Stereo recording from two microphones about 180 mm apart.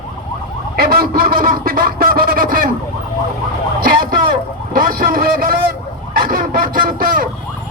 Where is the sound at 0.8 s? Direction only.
55° right (ahead or behind).